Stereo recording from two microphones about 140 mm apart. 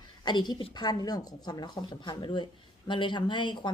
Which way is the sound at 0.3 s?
30° left (ahead or behind).